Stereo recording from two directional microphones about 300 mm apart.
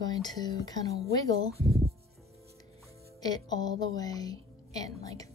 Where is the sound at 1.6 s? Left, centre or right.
Centre.